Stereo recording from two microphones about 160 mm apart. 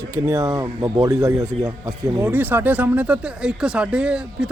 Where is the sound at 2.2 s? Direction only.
10° right (ahead or behind).